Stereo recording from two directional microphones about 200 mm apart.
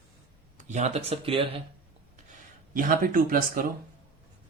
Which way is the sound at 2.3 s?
45° right (ahead or behind).